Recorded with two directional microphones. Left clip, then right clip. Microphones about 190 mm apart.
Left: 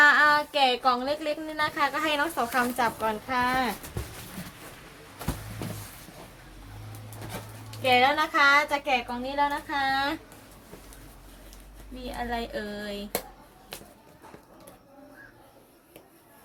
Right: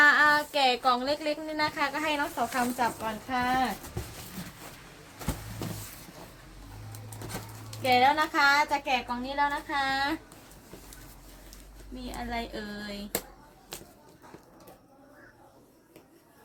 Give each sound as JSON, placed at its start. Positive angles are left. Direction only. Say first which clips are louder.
{"t": 0.0, "sound": "a woman's voice", "louder": "left 2 dB", "side_deg": 5}
{"t": 7.8, "sound": "a woman's voice", "louder": "left 1 dB", "side_deg": 10}
{"t": 11.9, "sound": "speech", "louder": "left 3 dB", "side_deg": 5}
{"t": 13.7, "sound": "a sound", "louder": "left 1 dB", "side_deg": 0}